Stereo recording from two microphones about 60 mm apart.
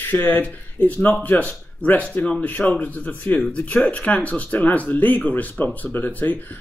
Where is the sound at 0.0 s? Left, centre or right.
Left.